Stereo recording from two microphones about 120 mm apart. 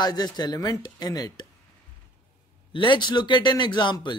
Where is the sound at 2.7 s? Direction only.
40° left (ahead or behind).